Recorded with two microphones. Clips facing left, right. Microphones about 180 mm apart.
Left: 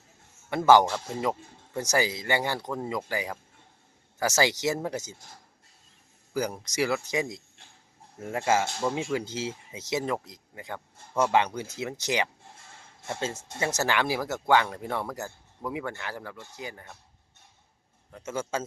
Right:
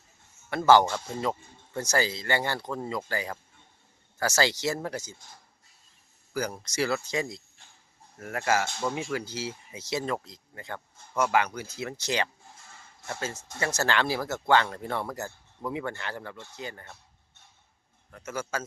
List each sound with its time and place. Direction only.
0.5 s speech: 15° left (ahead or behind)
0.9 s speech: 5° left (ahead or behind)
1.2 s speech: 15° left (ahead or behind)
6.3 s speech: 20° left (ahead or behind)
11.2 s speech: 25° left (ahead or behind)
18.2 s speech: 25° left (ahead or behind)